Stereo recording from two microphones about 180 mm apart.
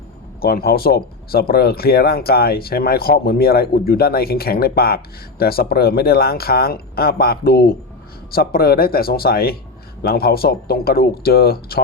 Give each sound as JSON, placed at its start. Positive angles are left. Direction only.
{"t": 0.4, "sound": "speech", "side_deg": 60}